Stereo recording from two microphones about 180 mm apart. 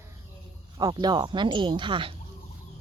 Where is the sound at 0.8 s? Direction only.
25° right (ahead or behind).